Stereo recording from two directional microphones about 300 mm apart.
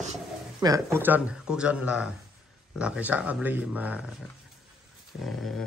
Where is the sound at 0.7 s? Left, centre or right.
Centre.